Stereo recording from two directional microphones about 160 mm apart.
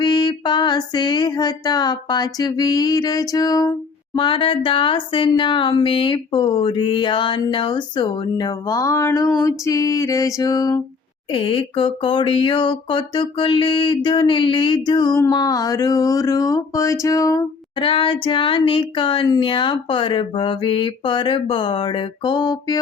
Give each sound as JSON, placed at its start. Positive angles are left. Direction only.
{"t": 0.0, "sound": "speech", "side_deg": 30}
{"t": 11.3, "sound": "speech", "side_deg": 35}
{"t": 17.7, "sound": "speech", "side_deg": 35}